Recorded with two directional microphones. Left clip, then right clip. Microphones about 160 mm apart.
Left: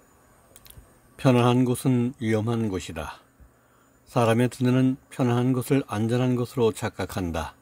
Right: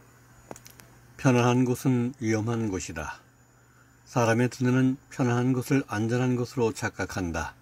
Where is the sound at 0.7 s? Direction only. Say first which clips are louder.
Right 2 dB; 20° left (ahead or behind).